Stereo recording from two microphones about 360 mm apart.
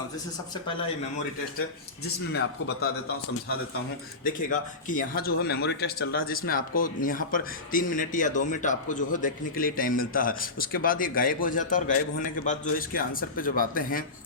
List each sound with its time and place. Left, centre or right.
2.3 s speech: left
4.2 s speech: left